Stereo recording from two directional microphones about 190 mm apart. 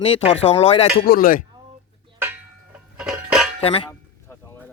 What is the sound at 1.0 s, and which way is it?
Speech, 50° left (ahead or behind).